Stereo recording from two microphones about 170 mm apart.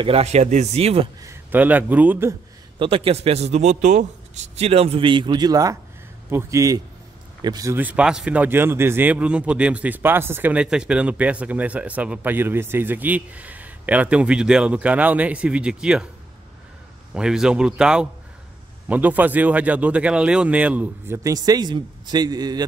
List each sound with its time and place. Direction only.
0.0 s a man's voice: 35° right (ahead or behind)
1.2 s speech: 15° right (ahead or behind)
2.8 s a man's voice: 35° right (ahead or behind)
7.7 s speech: 10° right (ahead or behind)
17.1 s speech: 5° right (ahead or behind)
21.2 s a man's voice: 20° right (ahead or behind)